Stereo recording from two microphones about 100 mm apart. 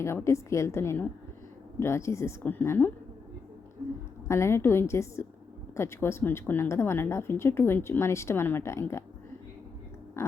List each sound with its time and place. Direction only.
0.0 s a woman's voice: 30° left (ahead or behind)
4.3 s a woman's voice: 25° left (ahead or behind)
10.2 s a sound: 30° left (ahead or behind)